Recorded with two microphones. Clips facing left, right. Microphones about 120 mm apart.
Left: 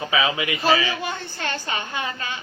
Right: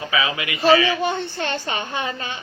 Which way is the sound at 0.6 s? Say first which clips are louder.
Right 6 dB; 30° right (ahead or behind).